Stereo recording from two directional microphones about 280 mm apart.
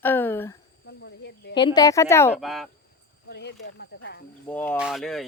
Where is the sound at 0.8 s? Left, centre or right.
Left.